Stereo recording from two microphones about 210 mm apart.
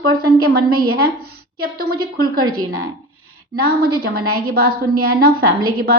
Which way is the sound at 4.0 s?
45° right (ahead or behind).